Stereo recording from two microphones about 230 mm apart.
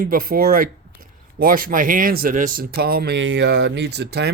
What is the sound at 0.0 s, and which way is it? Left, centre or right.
Speech, right.